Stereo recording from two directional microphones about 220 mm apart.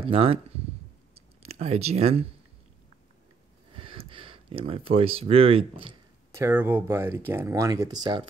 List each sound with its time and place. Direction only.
0.0 s speech: 25° right (ahead or behind)
1.1 s a sound: 25° right (ahead or behind)
3.7 s speech: 25° right (ahead or behind)
6.3 s speech: 10° right (ahead or behind)